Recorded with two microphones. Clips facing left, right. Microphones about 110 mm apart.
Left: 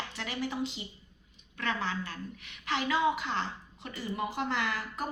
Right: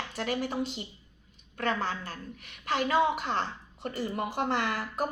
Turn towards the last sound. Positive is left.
turn(degrees=-45)  # may be behind; listen again after turning